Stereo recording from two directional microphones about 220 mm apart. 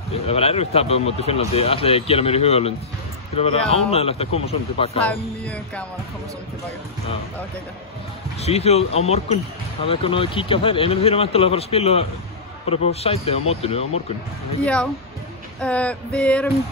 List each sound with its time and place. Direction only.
0.3 s speech: 25° left (ahead or behind)
5.0 s male singing: 5° left (ahead or behind)
8.4 s speech: 30° left (ahead or behind)
14.6 s male singing: 5° left (ahead or behind)